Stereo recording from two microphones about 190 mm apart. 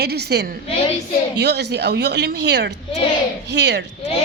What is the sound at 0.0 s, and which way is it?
A woman's voice, 60° right (ahead or behind).